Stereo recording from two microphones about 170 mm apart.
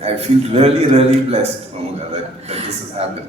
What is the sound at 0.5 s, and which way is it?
A man's voice, 35° right (ahead or behind).